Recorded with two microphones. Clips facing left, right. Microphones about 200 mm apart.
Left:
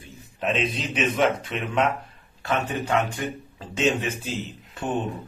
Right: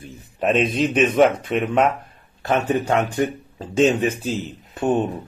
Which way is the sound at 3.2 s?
40° right (ahead or behind).